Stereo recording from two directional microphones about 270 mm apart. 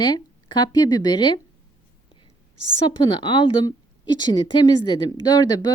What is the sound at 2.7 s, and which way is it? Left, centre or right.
A woman's voice, centre.